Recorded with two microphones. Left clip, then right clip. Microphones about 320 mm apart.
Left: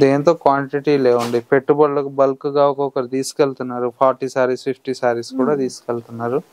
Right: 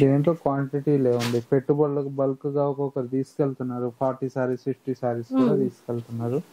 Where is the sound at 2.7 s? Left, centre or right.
Centre.